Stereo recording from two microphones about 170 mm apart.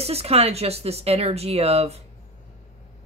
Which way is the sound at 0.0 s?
35° right (ahead or behind).